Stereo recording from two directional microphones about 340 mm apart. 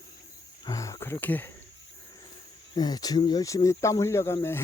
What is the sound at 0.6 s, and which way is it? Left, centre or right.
Cricket, centre.